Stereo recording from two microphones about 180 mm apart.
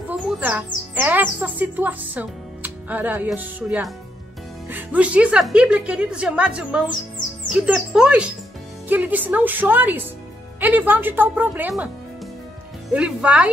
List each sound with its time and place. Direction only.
0.4 s speech: 10° right (ahead or behind)
12.9 s speech: 5° right (ahead or behind)